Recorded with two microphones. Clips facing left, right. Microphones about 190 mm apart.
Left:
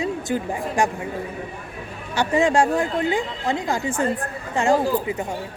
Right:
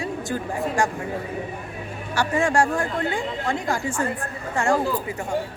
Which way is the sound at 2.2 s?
20° left (ahead or behind).